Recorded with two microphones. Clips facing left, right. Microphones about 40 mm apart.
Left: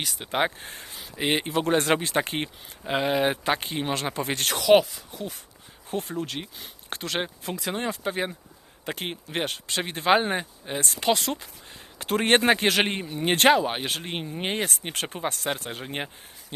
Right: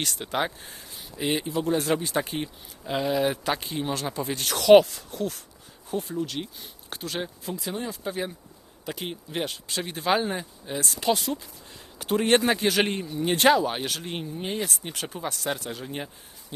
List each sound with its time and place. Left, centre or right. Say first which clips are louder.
0.0 s speech: right 2 dB; centre
0.3 s speech: left 3 dB; left
0.6 s speech: left 3 dB; left
1.5 s speech: left 3 dB; left
4.6 s speech: right 4 dB; centre
5.9 s speech: right 1 dB; left
11.2 s speech: left 1 dB; left
12.8 s speech: even; left
14.3 s speech: left 3 dB; left